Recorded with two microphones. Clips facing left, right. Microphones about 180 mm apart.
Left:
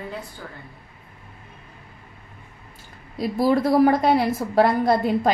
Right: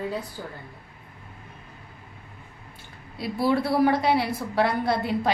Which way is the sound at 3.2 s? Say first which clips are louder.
Left 4 dB; 45° left (ahead or behind).